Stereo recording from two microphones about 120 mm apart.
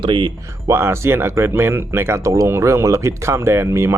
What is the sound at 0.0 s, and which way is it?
Speech, 40° right (ahead or behind).